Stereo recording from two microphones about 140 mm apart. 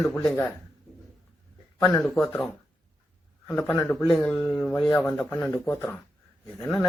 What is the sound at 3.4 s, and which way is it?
Speech, 15° left (ahead or behind).